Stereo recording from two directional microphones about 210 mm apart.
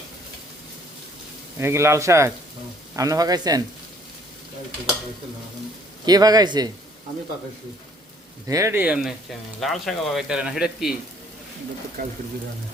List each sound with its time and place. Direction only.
1.5 s speech: 15° right (ahead or behind)
6.1 s speech: 20° right (ahead or behind)
8.4 s speech: 15° right (ahead or behind)
12.0 s speech: 45° right (ahead or behind)